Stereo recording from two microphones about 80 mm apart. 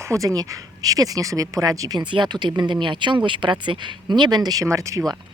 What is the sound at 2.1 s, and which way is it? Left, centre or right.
Speech, right.